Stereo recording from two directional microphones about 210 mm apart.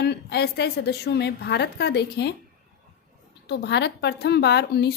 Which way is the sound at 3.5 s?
50° left (ahead or behind).